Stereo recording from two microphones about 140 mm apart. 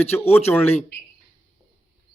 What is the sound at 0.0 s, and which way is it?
Speech, 15° left (ahead or behind).